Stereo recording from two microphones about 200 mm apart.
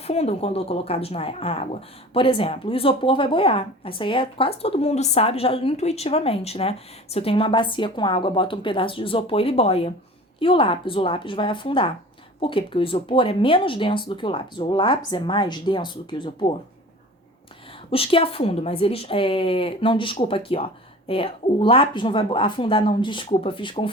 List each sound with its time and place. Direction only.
0.0 s speech: 30° left (ahead or behind)
17.9 s speech: 30° left (ahead or behind)